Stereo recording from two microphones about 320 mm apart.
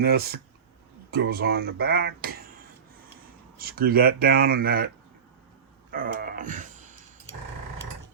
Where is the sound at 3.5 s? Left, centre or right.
Right.